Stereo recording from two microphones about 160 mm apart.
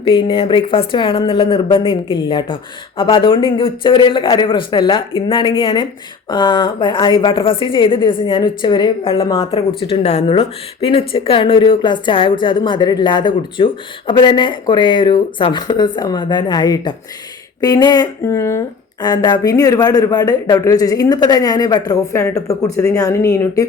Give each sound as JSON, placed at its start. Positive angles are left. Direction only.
{"t": 0.0, "sound": "a man's voice", "side_deg": 30}